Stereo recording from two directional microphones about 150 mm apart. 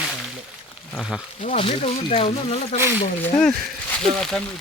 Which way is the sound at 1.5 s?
35° left (ahead or behind).